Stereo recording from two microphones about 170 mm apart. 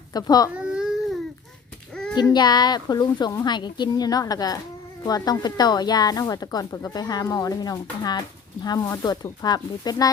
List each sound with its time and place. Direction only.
0.1 s speech: 20° left (ahead or behind)
0.6 s baby cry: 5° right (ahead or behind)
2.1 s speech: 25° left (ahead or behind)